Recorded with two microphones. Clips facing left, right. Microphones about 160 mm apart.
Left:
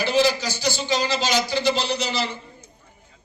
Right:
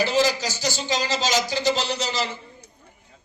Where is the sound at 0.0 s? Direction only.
40° right (ahead or behind).